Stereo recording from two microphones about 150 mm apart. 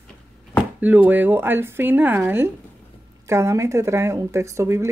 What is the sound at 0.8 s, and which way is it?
Speech, 10° right (ahead or behind).